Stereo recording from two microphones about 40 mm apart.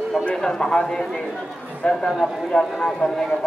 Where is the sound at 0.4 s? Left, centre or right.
Centre.